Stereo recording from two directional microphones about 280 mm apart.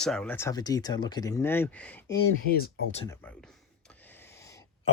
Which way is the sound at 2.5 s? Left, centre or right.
Left.